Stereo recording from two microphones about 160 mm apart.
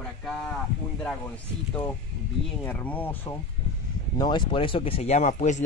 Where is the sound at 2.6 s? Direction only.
10° left (ahead or behind).